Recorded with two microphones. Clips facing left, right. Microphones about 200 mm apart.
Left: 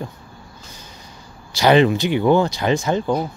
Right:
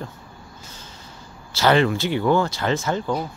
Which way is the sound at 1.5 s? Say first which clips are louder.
Left 4 dB; 15° left (ahead or behind).